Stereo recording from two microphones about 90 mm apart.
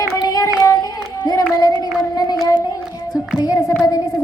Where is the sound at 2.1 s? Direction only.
50° left (ahead or behind).